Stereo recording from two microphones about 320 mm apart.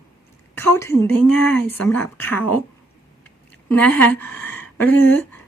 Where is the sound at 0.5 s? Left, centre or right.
Centre.